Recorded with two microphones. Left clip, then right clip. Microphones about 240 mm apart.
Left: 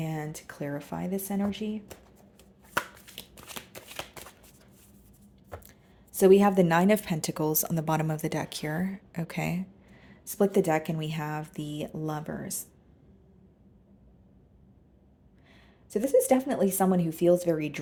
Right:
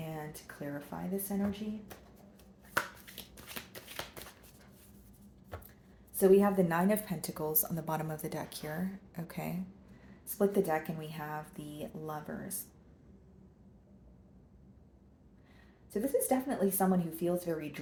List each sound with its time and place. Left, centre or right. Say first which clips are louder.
0.0 s speech: left 7 dB; left
3.5 s shuffling cards: left 4 dB; left
6.1 s a woman's voice: left 6 dB; left
15.9 s speech: left 8 dB; left